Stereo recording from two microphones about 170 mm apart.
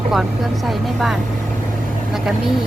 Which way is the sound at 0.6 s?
Centre (ahead or behind).